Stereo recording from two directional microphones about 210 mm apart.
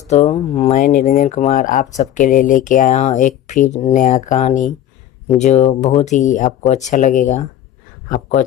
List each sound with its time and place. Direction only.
0.1 s speech: 30° left (ahead or behind)